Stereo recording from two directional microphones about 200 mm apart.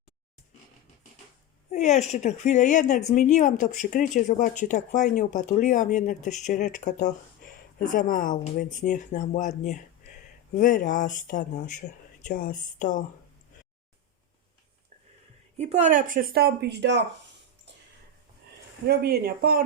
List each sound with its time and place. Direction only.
1.7 s speech: 35° left (ahead or behind)
15.5 s speech: 35° right (ahead or behind); by 17.0 s 55° right (ahead or behind)
18.9 s speech: 50° right (ahead or behind)